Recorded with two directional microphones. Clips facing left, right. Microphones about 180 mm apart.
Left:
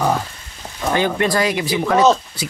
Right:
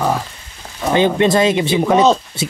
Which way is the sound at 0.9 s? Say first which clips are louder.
Right 5 dB; 20° right (ahead or behind).